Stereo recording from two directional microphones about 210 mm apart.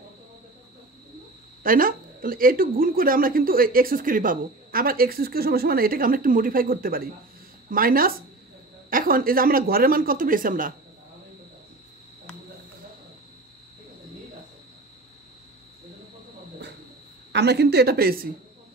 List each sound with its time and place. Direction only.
1.6 s speech: 40° right (ahead or behind)
17.3 s speech: 55° right (ahead or behind)